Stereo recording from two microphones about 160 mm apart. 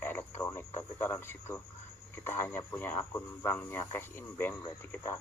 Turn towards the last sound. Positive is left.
turn(degrees=15)  # may be behind; listen again after turning